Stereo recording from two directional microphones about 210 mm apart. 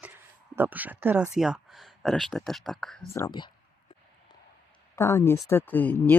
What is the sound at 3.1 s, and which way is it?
Speech, 15° left (ahead or behind).